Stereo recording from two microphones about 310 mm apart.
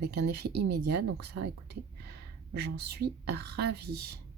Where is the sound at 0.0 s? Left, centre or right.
Right.